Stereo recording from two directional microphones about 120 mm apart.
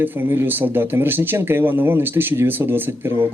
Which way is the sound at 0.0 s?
15° right (ahead or behind).